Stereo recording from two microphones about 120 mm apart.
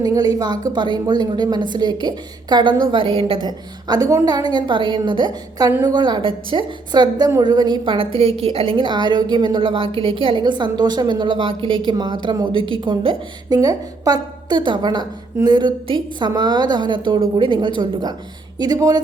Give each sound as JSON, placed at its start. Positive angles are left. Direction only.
{"t": 0.0, "sound": "a woman's voice", "side_deg": -30}
{"t": 3.4, "sound": "a woman's voice", "side_deg": -35}
{"t": 13.5, "sound": "a woman's voice", "side_deg": -30}